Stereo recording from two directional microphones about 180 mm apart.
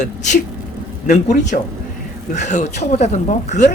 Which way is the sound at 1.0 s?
45° left (ahead or behind).